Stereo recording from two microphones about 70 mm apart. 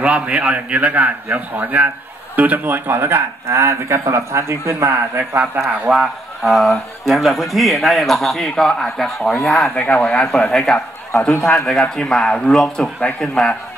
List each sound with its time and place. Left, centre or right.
0.0 s a man's voice: centre; by 5.2 s right
5.8 s speech: centre
9.8 s a man's voice: centre